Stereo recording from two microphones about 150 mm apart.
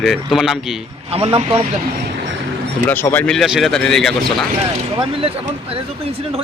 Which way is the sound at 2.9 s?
15° left (ahead or behind).